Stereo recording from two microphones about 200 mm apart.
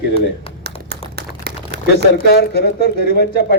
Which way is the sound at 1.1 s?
55° right (ahead or behind).